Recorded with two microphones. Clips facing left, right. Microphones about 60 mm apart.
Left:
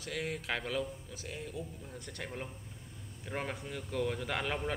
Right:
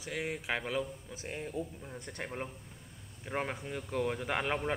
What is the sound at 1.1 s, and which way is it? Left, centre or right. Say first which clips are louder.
A man's voice: right 3 dB; right.